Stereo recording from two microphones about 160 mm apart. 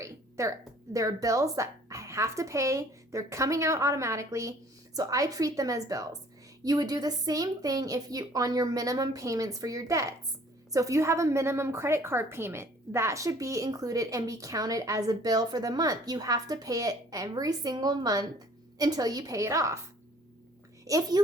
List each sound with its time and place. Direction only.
0.0 s a sound: 20° right (ahead or behind)
0.9 s a woman's voice: 20° right (ahead or behind)
20.8 s a child's voice: 20° right (ahead or behind)